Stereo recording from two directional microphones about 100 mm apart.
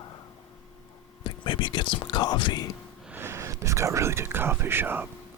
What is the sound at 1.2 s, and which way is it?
Speech, 50° left (ahead or behind).